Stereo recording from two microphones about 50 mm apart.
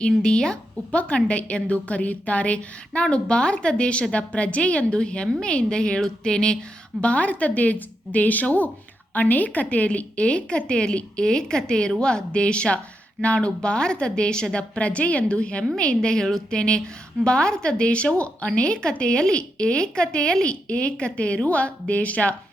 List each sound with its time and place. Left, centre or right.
0.1 s a woman's voice: centre
7.0 s a woman's voice: left